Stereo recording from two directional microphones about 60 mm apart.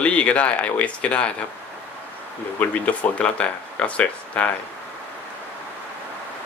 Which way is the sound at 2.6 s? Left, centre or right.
Left.